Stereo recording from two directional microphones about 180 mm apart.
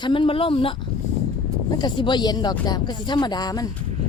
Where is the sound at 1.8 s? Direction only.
25° left (ahead or behind).